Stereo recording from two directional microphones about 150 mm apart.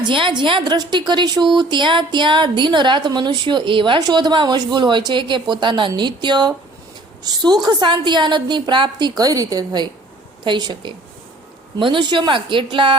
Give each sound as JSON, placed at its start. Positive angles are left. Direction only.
{"t": 0.0, "sound": "a woman's voice", "side_deg": -35}